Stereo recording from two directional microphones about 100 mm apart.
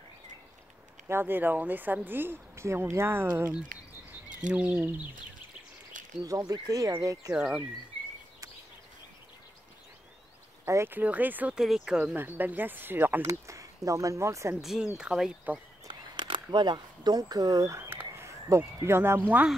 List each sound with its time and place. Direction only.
1.0 s speech: 20° right (ahead or behind)
4.5 s speech: 15° right (ahead or behind)
6.2 s speech: 40° right (ahead or behind)
7.3 s speech: 15° right (ahead or behind)
10.6 s speech: 25° right (ahead or behind)
11.5 s speech: 5° right (ahead or behind); by 14.6 s 30° right (ahead or behind)
14.6 s speech: 5° right (ahead or behind)
15.9 s a sound: 55° right (ahead or behind)
16.4 s speech: 50° right (ahead or behind); by 19.5 s 15° right (ahead or behind)